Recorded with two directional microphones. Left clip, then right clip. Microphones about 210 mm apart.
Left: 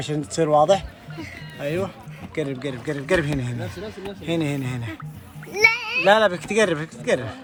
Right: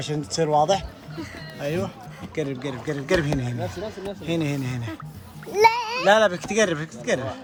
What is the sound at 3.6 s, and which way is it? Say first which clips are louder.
Speech: right 2 dB; 50° right (ahead or behind).